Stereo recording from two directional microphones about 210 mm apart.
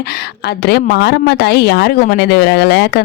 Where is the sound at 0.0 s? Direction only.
50° left (ahead or behind).